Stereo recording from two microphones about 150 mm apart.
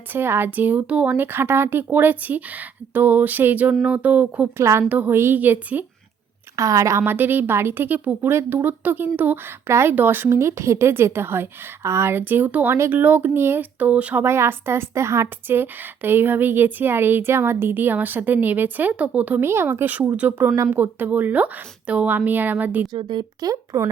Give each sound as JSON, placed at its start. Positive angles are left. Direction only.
{"t": 0.1, "sound": "a woman's voice", "side_deg": -15}
{"t": 6.6, "sound": "a woman's voice", "side_deg": -20}
{"t": 22.9, "sound": "speech", "side_deg": -30}